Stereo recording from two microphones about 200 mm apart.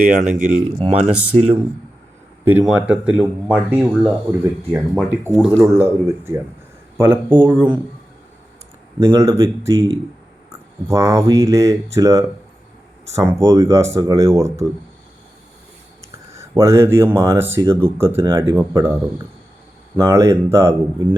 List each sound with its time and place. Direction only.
0.0 s speech: 40° right (ahead or behind)
1.1 s speech: 5° right (ahead or behind)
1.4 s speech: 30° right (ahead or behind)
2.4 s speech: 10° right (ahead or behind)
9.0 s speech: 15° right (ahead or behind)
16.3 s speech: 15° right (ahead or behind)